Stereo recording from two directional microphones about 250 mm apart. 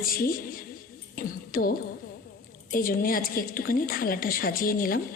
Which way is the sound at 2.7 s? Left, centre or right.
Left.